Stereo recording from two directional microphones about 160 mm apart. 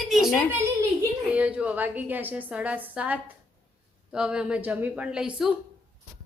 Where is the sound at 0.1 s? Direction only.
Centre (ahead or behind).